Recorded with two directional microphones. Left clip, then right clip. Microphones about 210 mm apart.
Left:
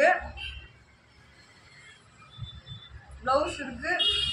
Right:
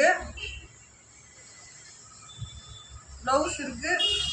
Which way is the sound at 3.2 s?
5° left (ahead or behind).